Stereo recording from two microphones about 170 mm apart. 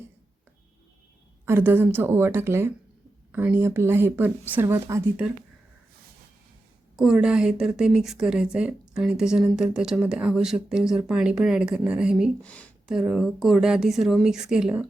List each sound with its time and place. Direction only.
1.5 s speech: 10° right (ahead or behind)
6.9 s speech: 5° right (ahead or behind)
12.4 s speech: 5° left (ahead or behind)